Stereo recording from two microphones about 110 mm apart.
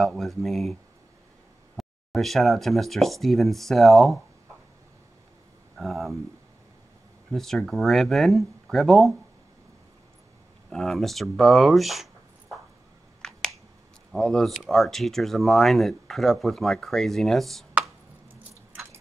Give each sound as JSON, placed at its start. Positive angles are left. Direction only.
{"t": 0.0, "sound": "speech", "side_deg": 0}
{"t": 1.8, "sound": "speech", "side_deg": 0}
{"t": 5.8, "sound": "speech", "side_deg": 0}
{"t": 7.3, "sound": "speech", "side_deg": 0}
{"t": 10.7, "sound": "speech", "side_deg": 5}
{"t": 13.2, "sound": "finger snapping", "side_deg": 5}
{"t": 14.1, "sound": "speech", "side_deg": 5}